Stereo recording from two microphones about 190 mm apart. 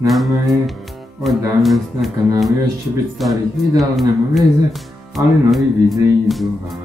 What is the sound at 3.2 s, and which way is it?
Music, centre (ahead or behind).